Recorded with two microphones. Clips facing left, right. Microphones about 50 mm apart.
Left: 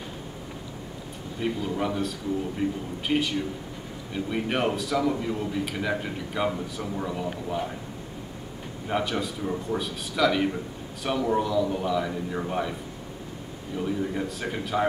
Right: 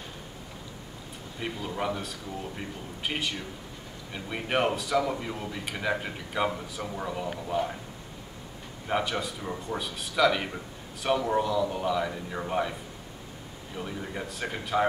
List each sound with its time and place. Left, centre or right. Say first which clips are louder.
1.4 s a man's voice: left 4 dB; centre
8.8 s a man's voice: left 1 dB; centre
13.7 s a man's voice: left 7 dB; centre